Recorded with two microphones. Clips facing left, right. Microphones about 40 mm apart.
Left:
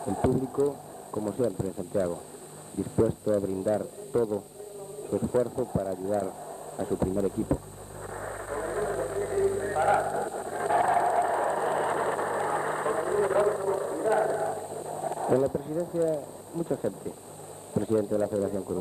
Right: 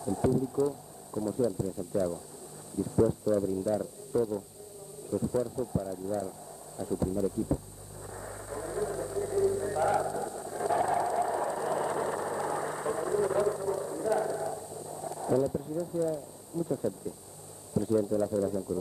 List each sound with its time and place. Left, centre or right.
0.0 s speech: left
8.1 s vehicle: left
17.7 s speech: left